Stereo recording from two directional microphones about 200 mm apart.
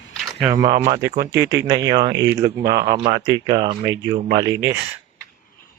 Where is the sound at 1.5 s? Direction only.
15° right (ahead or behind).